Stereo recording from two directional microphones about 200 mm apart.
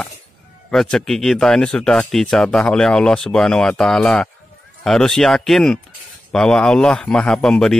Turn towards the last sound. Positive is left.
turn(degrees=5)  # may be behind; listen again after turning